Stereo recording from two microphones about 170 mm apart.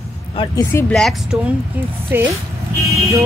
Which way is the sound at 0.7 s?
15° left (ahead or behind).